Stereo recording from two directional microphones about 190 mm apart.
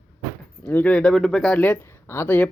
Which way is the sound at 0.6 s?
5° left (ahead or behind).